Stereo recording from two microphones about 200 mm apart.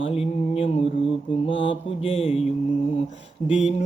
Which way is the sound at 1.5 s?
65° left (ahead or behind).